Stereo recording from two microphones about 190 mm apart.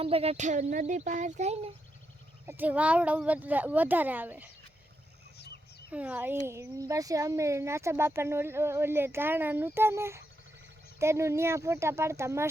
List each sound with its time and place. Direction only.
0.0 s speech: 30° right (ahead or behind)
2.5 s speech: 10° right (ahead or behind)
5.9 s speech: 10° right (ahead or behind)